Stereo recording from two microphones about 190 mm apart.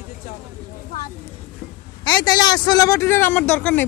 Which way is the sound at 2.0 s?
20° left (ahead or behind).